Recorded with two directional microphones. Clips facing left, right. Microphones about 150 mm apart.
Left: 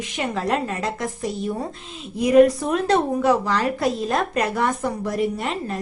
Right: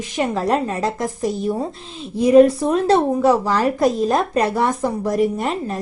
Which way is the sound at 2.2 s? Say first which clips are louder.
Right 3 dB; 30° right (ahead or behind).